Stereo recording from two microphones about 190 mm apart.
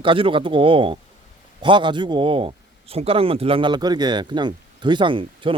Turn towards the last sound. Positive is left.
turn(degrees=-25)  # may be behind; listen again after turning